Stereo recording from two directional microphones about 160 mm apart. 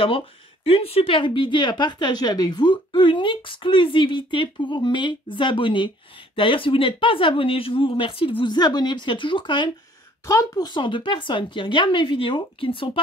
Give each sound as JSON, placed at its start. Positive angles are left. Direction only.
{"t": 0.7, "sound": "a woman's voice", "side_deg": 35}